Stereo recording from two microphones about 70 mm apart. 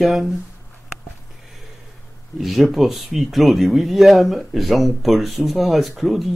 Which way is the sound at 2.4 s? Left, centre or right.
Centre.